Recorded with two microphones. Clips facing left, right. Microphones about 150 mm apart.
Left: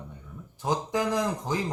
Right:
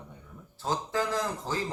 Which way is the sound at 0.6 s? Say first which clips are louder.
Left 3 dB; 15° left (ahead or behind).